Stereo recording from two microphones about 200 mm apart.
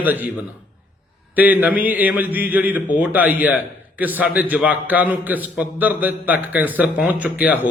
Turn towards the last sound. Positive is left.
turn(degrees=-5)  # may be behind; listen again after turning